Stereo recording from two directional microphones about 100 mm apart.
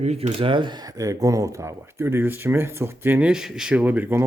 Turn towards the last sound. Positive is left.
turn(degrees=-20)  # may be behind; listen again after turning